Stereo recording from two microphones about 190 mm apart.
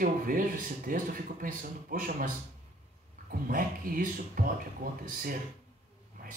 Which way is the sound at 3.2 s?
45° right (ahead or behind).